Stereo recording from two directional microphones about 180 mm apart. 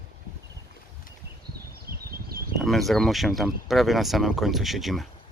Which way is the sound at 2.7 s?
Centre (ahead or behind).